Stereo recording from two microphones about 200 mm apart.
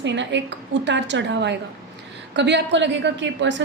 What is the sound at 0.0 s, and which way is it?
A woman's voice, 65° right (ahead or behind).